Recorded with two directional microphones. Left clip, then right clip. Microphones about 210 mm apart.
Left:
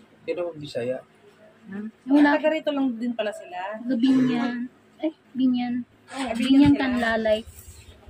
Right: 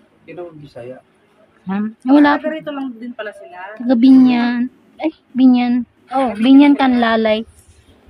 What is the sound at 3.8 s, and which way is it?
A woman's voice, 55° right (ahead or behind).